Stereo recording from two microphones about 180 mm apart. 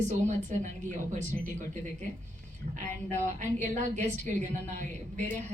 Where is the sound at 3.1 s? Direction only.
40° right (ahead or behind).